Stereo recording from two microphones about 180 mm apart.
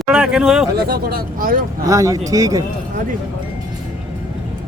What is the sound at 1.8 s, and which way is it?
Speech, 20° right (ahead or behind).